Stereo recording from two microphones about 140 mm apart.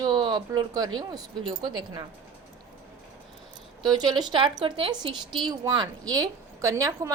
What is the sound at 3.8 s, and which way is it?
A woman's voice, 30° right (ahead or behind).